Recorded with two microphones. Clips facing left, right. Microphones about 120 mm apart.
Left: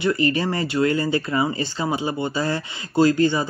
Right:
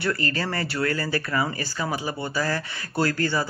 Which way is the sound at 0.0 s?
20° left (ahead or behind).